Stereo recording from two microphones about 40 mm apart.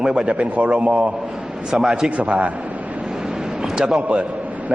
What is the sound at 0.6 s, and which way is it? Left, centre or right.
Speech, right.